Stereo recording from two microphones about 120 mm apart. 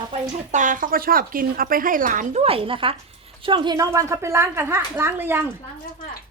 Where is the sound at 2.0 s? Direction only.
90° right.